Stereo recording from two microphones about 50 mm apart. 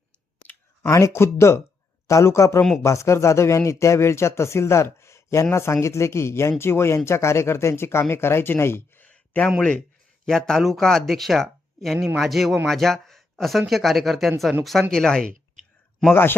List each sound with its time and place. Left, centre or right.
0.8 s speech: left
2.0 s speech: left
2.8 s speech: left
5.5 s speech: left
9.0 s a sound: left
10.2 s speech: centre
14.8 s speech: centre